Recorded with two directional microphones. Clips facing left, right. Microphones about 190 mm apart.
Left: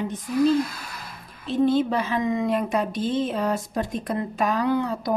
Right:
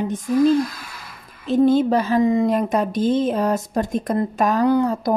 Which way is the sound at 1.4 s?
45° right (ahead or behind).